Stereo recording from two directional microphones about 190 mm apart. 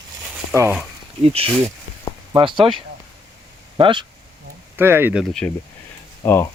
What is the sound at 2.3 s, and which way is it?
Speech, 25° right (ahead or behind).